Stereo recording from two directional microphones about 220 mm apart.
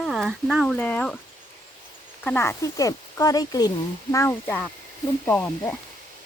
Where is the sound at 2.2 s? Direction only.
10° left (ahead or behind).